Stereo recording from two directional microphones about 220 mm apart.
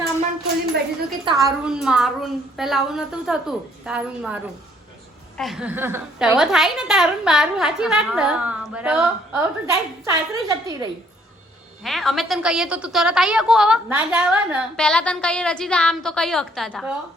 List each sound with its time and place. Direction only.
1.2 s a woman's voice: 15° right (ahead or behind)
1.6 s a woman's voice: 5° right (ahead or behind)
5.4 s a woman's voice: centre (ahead or behind)
11.8 s a woman's voice: centre (ahead or behind)